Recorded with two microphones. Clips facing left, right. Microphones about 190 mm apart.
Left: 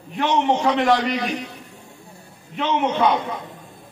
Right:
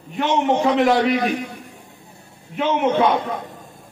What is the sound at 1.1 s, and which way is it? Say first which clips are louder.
Speech: right 4 dB; 50° right (ahead or behind).